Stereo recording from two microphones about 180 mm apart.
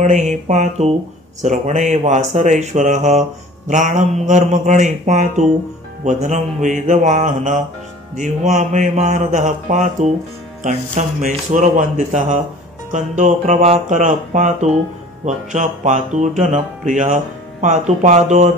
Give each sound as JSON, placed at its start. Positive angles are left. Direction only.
{"t": 0.0, "sound": "mantra", "side_deg": -40}
{"t": 1.4, "sound": "speech", "side_deg": -45}
{"t": 6.0, "sound": "mantra", "side_deg": -40}
{"t": 8.2, "sound": "speech", "side_deg": -40}